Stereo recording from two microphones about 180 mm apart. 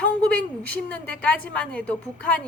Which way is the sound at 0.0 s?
5° left (ahead or behind).